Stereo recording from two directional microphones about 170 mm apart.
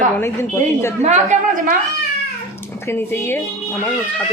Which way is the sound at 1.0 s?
45° right (ahead or behind).